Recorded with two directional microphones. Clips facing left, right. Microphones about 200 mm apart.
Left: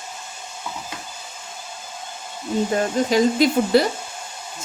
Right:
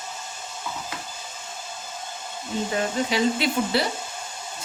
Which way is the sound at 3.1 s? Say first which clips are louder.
Left 8 dB; 45° left (ahead or behind).